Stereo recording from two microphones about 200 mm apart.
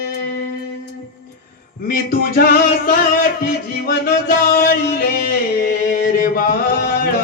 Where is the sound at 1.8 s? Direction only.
45° left (ahead or behind).